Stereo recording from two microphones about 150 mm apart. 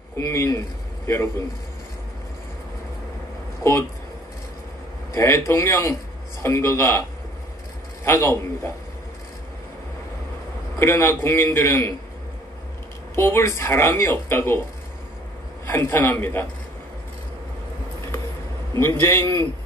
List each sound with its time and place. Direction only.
0.2 s a man's voice: 20° left (ahead or behind)
5.1 s a man's voice: 20° left (ahead or behind)
10.8 s speech: 15° left (ahead or behind)
13.1 s speech: 15° left (ahead or behind)
15.6 s speech: 15° left (ahead or behind)
18.8 s speech: 15° left (ahead or behind)